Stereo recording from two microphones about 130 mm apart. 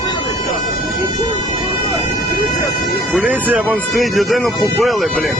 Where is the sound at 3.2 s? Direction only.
10° right (ahead or behind).